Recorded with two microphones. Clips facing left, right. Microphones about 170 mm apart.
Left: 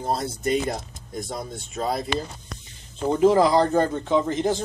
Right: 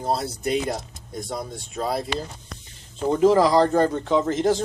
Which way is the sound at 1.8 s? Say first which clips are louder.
Even; centre (ahead or behind).